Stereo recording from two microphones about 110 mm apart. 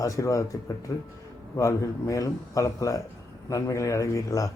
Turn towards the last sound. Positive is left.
turn(degrees=30)  # may be behind; listen again after turning